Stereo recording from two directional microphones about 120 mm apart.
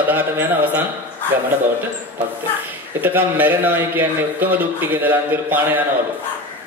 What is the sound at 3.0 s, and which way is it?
Speech, 15° right (ahead or behind).